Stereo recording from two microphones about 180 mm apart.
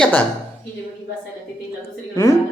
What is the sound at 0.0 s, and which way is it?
Speech, 10° left (ahead or behind).